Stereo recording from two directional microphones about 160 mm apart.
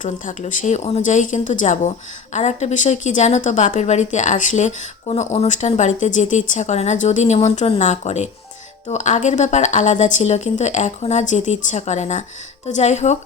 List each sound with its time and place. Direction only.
0.0 s a woman's voice: 55° left (ahead or behind)